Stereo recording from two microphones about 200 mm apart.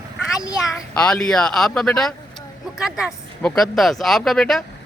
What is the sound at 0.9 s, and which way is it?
Speech, 5° left (ahead or behind).